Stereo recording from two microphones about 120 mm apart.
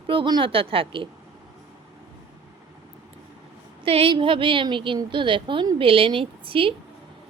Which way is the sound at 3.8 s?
50° right (ahead or behind).